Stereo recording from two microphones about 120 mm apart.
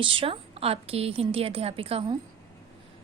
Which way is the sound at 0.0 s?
45° right (ahead or behind).